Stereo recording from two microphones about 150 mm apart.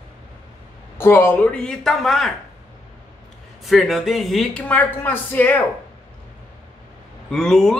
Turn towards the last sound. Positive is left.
turn(degrees=5)  # may be behind; listen again after turning